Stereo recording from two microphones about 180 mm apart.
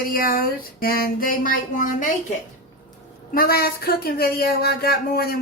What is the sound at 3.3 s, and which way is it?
Speech, 55° left (ahead or behind).